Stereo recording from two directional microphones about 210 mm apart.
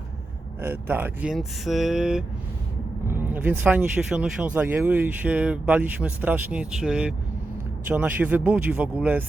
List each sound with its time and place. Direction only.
0.6 s speech: 10° right (ahead or behind)